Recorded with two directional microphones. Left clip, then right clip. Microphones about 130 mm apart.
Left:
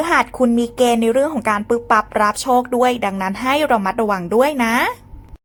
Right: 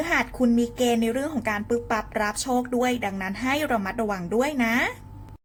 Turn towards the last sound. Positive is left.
turn(degrees=40)  # may be behind; listen again after turning